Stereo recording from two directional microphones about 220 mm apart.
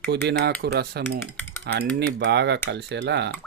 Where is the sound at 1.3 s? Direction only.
10° left (ahead or behind).